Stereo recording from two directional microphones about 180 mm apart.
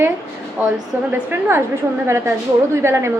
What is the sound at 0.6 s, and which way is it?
A woman's voice, 10° right (ahead or behind).